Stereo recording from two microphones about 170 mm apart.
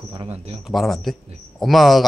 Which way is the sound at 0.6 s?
Centre (ahead or behind).